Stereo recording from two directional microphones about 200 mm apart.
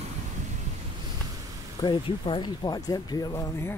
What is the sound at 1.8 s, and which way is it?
Speech, 25° left (ahead or behind).